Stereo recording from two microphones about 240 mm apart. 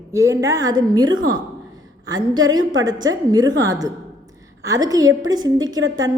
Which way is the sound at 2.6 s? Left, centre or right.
Right.